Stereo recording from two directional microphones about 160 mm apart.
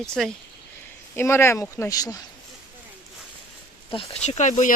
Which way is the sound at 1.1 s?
15° left (ahead or behind).